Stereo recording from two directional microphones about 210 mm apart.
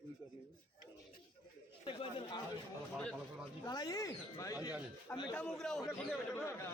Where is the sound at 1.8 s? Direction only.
25° left (ahead or behind).